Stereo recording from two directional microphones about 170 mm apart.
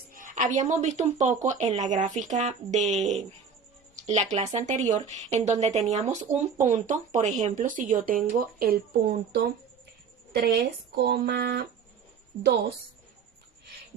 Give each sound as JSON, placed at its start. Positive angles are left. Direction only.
{"t": 0.1, "sound": "speech", "side_deg": -50}
{"t": 10.4, "sound": "speech", "side_deg": -65}